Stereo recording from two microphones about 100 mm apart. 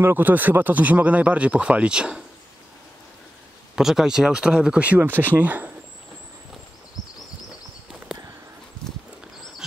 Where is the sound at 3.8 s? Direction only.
5° right (ahead or behind).